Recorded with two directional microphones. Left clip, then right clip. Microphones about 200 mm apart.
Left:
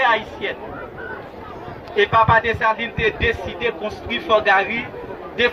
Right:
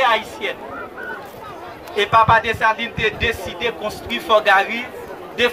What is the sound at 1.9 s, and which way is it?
A man's voice, 40° right (ahead or behind).